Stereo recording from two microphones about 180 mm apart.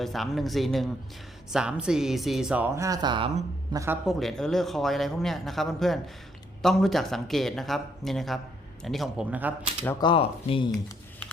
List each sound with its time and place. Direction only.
0.0 s speech: centre (ahead or behind); by 3.9 s 15° right (ahead or behind)
4.0 s speech: centre (ahead or behind)
10.0 s speech: 30° left (ahead or behind)